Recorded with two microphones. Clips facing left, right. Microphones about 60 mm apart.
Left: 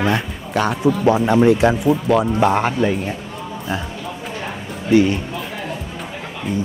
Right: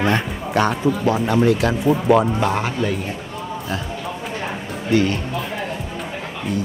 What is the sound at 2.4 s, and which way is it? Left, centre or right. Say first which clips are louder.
Speech: left 4 dB; centre.